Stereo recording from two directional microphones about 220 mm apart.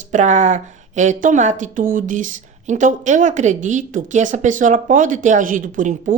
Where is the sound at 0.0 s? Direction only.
35° right (ahead or behind).